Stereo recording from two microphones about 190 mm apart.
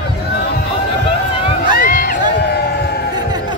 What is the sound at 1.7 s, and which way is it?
Run, 45° left (ahead or behind).